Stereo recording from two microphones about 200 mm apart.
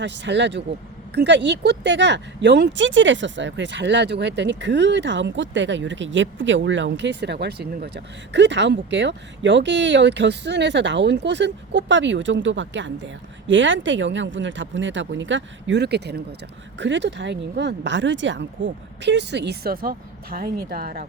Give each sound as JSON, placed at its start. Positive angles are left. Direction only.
{"t": 0.0, "sound": "speech", "side_deg": -60}